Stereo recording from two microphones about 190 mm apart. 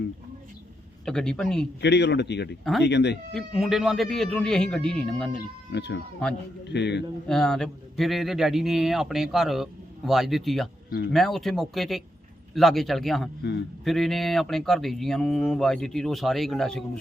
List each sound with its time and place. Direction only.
1.0 s a man's voice: 5° left (ahead or behind)
1.8 s speech: 65° left (ahead or behind)
3.3 s a man's voice: centre (ahead or behind)
5.7 s speech: 65° left (ahead or behind)
7.3 s a man's voice: 5° left (ahead or behind)
10.8 s speech: 55° left (ahead or behind)
11.1 s a man's voice: centre (ahead or behind)
13.4 s speech: 65° left (ahead or behind)
13.8 s a man's voice: centre (ahead or behind)